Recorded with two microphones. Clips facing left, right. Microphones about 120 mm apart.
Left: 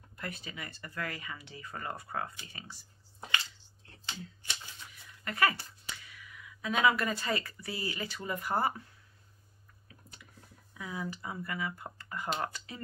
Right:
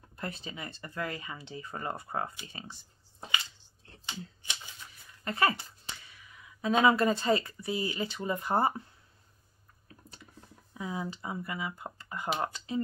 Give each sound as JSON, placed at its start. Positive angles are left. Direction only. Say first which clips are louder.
{"t": 0.2, "sound": "speech", "louder": "right 3 dB", "side_deg": -25}
{"t": 2.5, "sound": "a sound", "louder": "right 3 dB", "side_deg": -25}
{"t": 4.0, "sound": "shuffling cards", "louder": "right 1 dB", "side_deg": -15}
{"t": 5.2, "sound": "speech", "louder": "right 2 dB", "side_deg": -25}
{"t": 10.7, "sound": "speech", "louder": "right 3 dB", "side_deg": -25}